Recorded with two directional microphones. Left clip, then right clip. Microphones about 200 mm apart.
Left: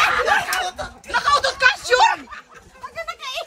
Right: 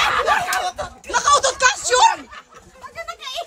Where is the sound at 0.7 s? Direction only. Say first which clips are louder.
Right 1 dB; 20° right (ahead or behind).